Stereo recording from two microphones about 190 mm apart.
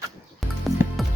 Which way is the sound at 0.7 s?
15° left (ahead or behind).